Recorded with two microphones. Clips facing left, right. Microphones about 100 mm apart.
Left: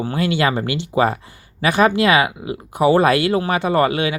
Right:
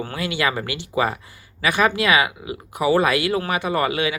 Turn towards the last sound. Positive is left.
turn(degrees=30)  # may be behind; listen again after turning